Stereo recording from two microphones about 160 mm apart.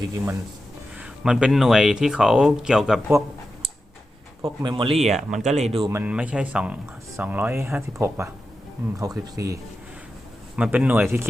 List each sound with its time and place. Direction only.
0.0 s speech: 20° right (ahead or behind)
0.9 s speech: 5° right (ahead or behind)
4.4 s speech: 30° right (ahead or behind)
5.1 s speech: centre (ahead or behind)
5.5 s speech: 45° right (ahead or behind)
5.9 s speech: 10° right (ahead or behind)
10.6 s speech: 10° right (ahead or behind)